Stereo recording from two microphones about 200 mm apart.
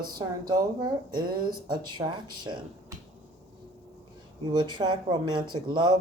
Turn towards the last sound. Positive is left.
turn(degrees=-20)  # may be behind; listen again after turning